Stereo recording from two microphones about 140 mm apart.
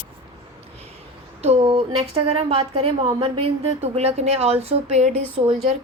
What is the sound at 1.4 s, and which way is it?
A woman's voice, 45° right (ahead or behind).